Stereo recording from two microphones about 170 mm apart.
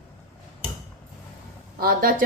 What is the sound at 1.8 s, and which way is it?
Speech, 60° right (ahead or behind).